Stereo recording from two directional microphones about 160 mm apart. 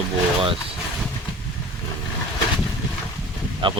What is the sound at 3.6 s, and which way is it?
Speech, 30° right (ahead or behind).